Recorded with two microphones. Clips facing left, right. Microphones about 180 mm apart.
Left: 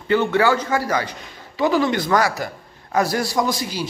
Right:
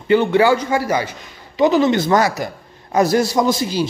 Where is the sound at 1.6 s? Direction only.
20° right (ahead or behind).